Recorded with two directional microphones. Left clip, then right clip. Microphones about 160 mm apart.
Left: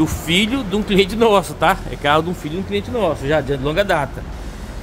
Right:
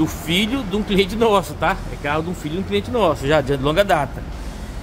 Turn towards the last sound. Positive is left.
turn(degrees=5)  # may be behind; listen again after turning